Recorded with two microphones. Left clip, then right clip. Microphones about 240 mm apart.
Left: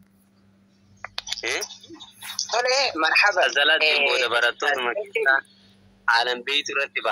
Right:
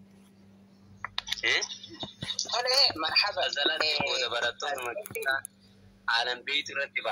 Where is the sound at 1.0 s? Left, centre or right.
Centre.